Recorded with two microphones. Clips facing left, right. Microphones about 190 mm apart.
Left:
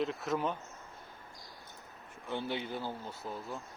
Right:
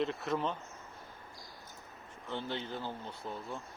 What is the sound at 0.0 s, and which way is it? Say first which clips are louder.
Speech: even; centre (ahead or behind).